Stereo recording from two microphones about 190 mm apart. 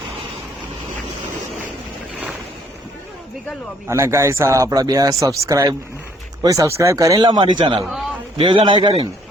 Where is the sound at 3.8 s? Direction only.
15° right (ahead or behind).